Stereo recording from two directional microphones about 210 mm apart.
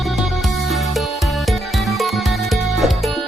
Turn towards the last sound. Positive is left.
turn(degrees=0)  # may be behind; listen again after turning